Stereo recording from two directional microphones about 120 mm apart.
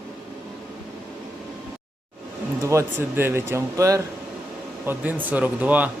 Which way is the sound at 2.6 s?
25° right (ahead or behind).